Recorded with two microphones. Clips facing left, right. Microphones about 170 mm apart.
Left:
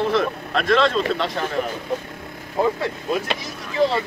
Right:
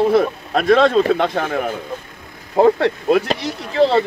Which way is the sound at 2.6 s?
65° right (ahead or behind).